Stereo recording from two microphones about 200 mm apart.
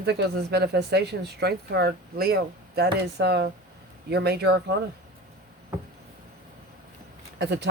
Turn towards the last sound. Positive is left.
turn(degrees=-55)  # may be behind; listen again after turning